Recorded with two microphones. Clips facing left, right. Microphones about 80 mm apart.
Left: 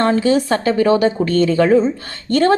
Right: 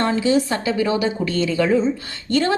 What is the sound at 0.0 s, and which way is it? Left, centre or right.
A woman's voice, left.